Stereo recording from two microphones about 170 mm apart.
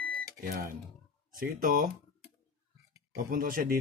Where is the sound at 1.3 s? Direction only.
50° right (ahead or behind).